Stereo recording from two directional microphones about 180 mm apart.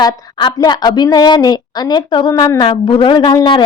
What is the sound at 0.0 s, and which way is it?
A woman's voice, 20° left (ahead or behind).